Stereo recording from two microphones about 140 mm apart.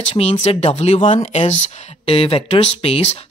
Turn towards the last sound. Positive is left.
turn(degrees=45)  # may be behind; listen again after turning